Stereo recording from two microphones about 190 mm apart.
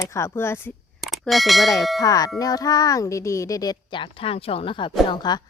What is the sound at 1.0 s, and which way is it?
Speech, centre (ahead or behind).